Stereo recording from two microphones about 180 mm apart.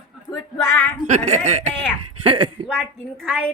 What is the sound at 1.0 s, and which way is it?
Speech, 40° right (ahead or behind).